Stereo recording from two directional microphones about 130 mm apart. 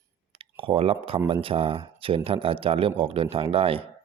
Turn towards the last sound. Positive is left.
turn(degrees=-45)  # may be behind; listen again after turning